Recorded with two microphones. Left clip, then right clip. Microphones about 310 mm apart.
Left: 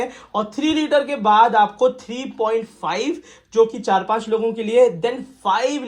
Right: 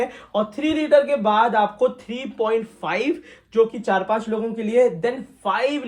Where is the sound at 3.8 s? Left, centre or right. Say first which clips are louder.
Left 2 dB; centre.